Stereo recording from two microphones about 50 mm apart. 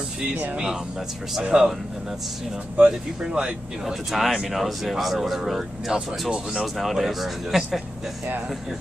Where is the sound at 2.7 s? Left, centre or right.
Right.